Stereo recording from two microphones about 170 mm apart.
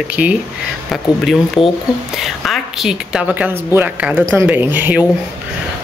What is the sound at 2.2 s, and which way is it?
A woman's voice, centre (ahead or behind).